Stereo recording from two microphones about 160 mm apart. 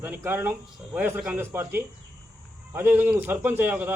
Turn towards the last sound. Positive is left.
turn(degrees=-10)  # may be behind; listen again after turning